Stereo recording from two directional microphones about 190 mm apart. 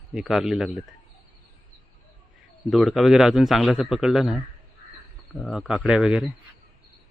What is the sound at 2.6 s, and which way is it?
Speech, centre (ahead or behind).